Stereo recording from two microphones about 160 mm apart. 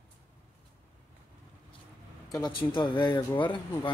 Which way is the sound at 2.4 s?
30° left (ahead or behind).